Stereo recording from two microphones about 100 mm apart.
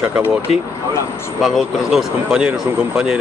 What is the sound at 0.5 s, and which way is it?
Speech, 90° left.